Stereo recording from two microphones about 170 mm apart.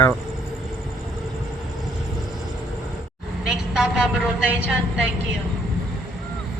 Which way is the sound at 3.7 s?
5° right (ahead or behind).